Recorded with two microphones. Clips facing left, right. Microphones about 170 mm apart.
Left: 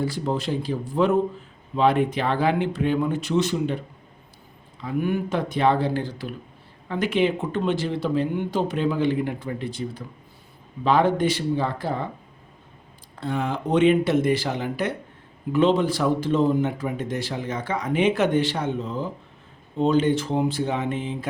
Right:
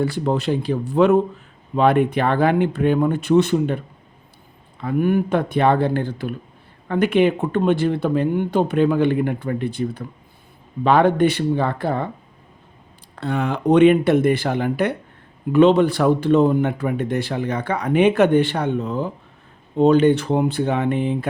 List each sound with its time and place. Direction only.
0.0 s speech: 65° right (ahead or behind)
1.7 s speech: 55° right (ahead or behind)
4.8 s speech: 55° right (ahead or behind)
13.1 s speech: 70° right (ahead or behind)